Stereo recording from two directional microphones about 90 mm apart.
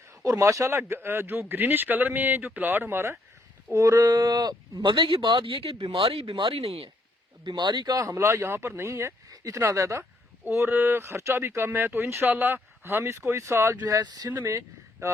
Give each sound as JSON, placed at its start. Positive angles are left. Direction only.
{"t": 0.3, "sound": "speech", "side_deg": -35}
{"t": 4.9, "sound": "speech", "side_deg": -75}
{"t": 7.4, "sound": "speech", "side_deg": -60}
{"t": 7.9, "sound": "speech", "side_deg": -35}
{"t": 14.3, "sound": "speech", "side_deg": -30}